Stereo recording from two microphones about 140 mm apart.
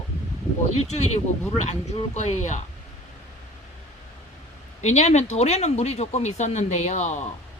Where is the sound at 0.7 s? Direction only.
50° left (ahead or behind).